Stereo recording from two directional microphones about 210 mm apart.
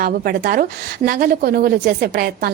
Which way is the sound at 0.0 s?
45° right (ahead or behind).